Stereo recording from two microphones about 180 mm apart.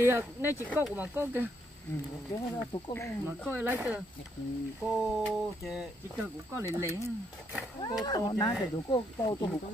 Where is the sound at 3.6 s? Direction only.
10° right (ahead or behind).